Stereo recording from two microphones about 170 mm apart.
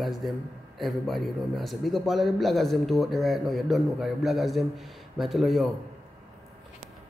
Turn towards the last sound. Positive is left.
turn(degrees=0)  # may be behind; listen again after turning